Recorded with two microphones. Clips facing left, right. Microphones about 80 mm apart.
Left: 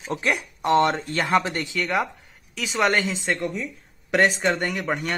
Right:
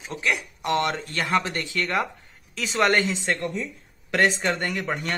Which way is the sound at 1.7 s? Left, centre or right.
Centre.